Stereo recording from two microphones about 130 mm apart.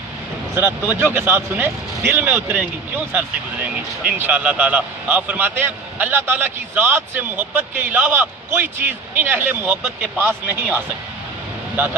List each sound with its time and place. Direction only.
0.5 s speech: 20° right (ahead or behind)